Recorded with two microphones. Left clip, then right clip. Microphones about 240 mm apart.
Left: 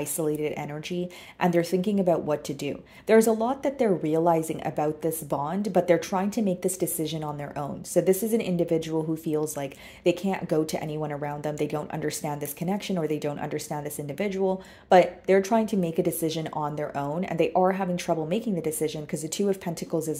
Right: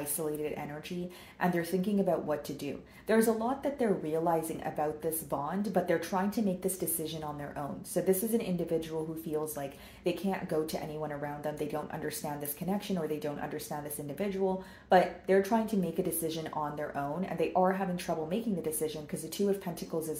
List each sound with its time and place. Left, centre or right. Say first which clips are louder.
0.2 s speech: left 7 dB; left